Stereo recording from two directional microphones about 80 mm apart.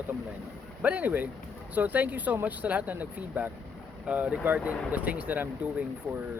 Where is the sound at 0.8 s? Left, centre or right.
Centre.